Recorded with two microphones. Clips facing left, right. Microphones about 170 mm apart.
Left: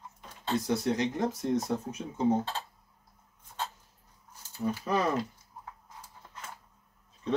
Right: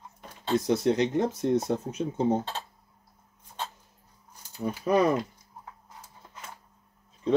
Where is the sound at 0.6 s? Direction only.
20° right (ahead or behind).